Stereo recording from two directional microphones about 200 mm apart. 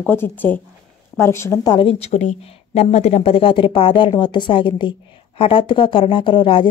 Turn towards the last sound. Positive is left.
turn(degrees=25)  # may be behind; listen again after turning